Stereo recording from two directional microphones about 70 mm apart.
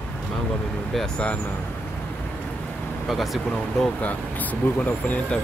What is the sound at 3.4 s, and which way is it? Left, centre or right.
Speech, centre.